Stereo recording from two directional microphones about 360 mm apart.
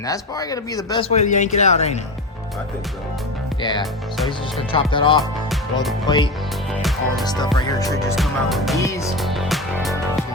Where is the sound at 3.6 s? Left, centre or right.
Centre.